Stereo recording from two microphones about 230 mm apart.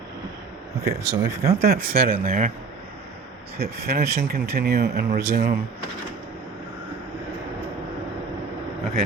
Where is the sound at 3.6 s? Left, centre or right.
Right.